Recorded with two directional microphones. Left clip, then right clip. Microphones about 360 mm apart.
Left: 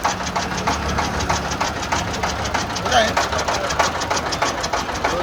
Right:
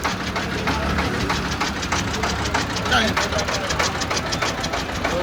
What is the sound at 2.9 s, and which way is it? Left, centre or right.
Speech, centre.